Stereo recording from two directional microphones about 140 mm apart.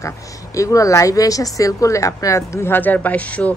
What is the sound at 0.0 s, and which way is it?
Speech, 25° left (ahead or behind).